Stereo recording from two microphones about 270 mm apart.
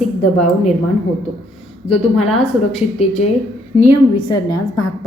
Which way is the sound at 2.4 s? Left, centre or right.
Left.